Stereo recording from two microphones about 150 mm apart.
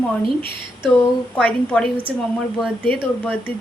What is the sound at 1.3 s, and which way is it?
Speech, 5° left (ahead or behind).